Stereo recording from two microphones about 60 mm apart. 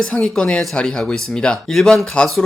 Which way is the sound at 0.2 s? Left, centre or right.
Centre.